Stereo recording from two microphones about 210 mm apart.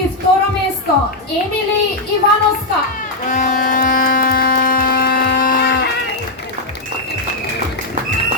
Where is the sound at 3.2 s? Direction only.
35° left (ahead or behind).